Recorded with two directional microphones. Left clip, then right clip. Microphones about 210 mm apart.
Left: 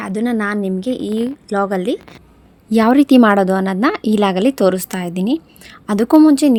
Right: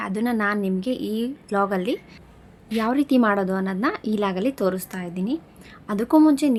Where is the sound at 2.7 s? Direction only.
40° left (ahead or behind).